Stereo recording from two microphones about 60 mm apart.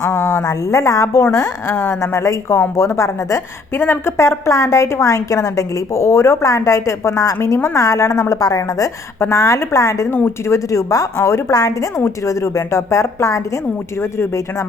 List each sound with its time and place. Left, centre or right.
0.0 s a sound: left
0.4 s a woman's voice: left
3.8 s a woman's voice: left
7.4 s a woman's voice: left
9.3 s a woman's voice: left
10.2 s a woman's voice: left
11.2 s a woman's voice: left
11.9 s a woman's voice: left
14.0 s speech: left